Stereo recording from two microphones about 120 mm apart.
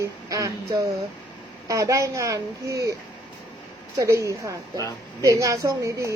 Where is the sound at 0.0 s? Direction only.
25° right (ahead or behind).